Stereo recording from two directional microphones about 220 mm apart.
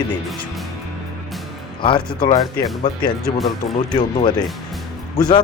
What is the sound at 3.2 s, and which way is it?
Speech, centre (ahead or behind).